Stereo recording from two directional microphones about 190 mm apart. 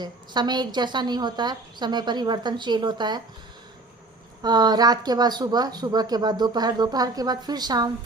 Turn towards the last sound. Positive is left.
turn(degrees=-20)  # may be behind; listen again after turning